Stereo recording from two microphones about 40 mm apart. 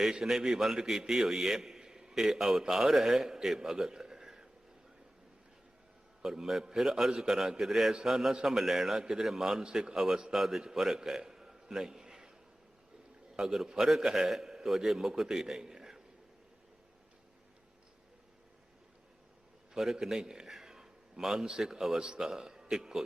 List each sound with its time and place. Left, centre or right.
0.0 s a man's voice: centre
3.7 s a sound: centre
6.2 s a man's voice: centre
13.3 s a man's voice: centre
19.7 s a man's voice: centre